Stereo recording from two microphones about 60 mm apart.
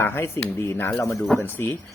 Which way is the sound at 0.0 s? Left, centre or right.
Left.